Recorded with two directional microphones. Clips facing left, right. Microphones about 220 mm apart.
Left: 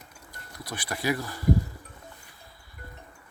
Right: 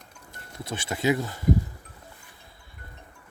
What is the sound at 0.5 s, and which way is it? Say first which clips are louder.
Speech: right 3 dB; 25° right (ahead or behind).